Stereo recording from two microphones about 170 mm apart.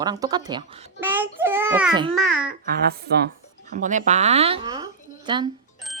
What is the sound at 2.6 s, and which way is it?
Speech, 60° right (ahead or behind).